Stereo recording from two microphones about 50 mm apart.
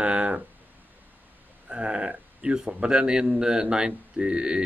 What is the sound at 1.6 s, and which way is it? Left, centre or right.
Speech, right.